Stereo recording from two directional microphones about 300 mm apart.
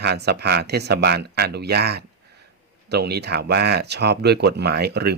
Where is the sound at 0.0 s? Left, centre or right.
Right.